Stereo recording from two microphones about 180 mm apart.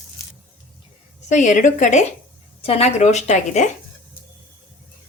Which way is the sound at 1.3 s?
45° left (ahead or behind).